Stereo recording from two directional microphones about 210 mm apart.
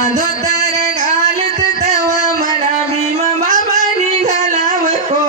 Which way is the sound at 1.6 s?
35° right (ahead or behind).